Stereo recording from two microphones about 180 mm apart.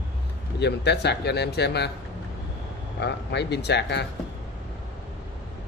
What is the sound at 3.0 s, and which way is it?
Speech, 70° left (ahead or behind).